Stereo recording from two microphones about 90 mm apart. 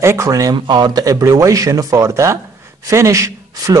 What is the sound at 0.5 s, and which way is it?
Speech, 55° right (ahead or behind).